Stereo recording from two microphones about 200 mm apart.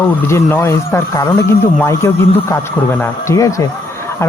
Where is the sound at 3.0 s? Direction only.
15° left (ahead or behind).